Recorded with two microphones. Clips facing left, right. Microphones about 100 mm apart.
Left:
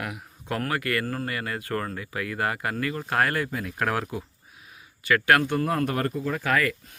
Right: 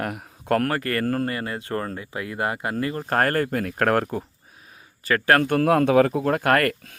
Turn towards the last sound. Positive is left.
turn(degrees=-60)  # may be behind; listen again after turning